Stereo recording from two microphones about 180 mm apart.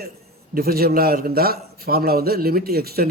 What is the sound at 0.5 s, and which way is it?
A man's voice, 55° right (ahead or behind).